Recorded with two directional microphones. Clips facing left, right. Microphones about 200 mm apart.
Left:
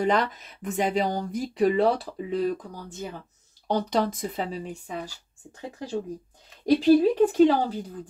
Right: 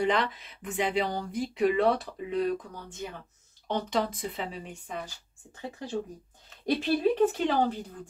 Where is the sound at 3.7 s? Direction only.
35° left (ahead or behind).